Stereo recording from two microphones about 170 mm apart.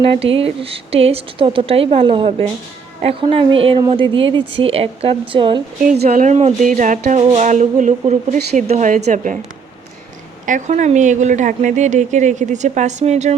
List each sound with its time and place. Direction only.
0.0 s speech: 35° right (ahead or behind)
6.1 s speech: 45° right (ahead or behind)
10.4 s speech: 45° right (ahead or behind)